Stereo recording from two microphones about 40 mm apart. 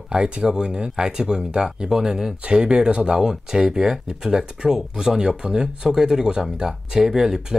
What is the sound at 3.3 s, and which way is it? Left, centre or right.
Speech, centre.